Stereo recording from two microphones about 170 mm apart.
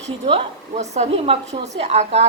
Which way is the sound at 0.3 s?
35° right (ahead or behind).